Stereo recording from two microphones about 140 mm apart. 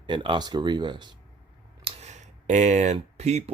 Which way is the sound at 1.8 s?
55° right (ahead or behind).